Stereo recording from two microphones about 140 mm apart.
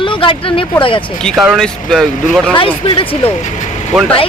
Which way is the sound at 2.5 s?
40° left (ahead or behind).